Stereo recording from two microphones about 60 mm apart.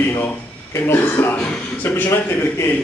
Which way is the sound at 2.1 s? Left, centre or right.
Left.